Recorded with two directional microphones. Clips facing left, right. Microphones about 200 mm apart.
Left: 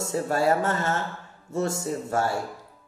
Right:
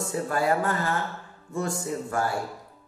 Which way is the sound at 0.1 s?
25° left (ahead or behind).